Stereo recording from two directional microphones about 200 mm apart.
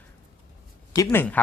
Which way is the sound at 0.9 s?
10° left (ahead or behind).